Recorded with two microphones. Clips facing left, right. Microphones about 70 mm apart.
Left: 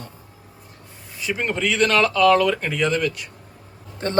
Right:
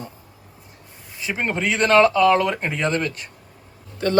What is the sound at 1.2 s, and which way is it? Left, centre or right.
Speech, right.